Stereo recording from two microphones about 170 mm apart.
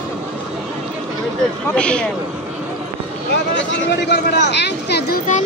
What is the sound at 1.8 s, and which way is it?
Speech, 5° left (ahead or behind).